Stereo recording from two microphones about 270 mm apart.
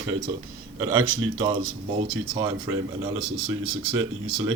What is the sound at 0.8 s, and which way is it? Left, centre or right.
Speech, centre.